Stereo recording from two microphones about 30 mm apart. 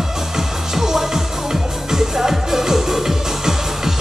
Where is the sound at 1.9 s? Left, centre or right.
Centre.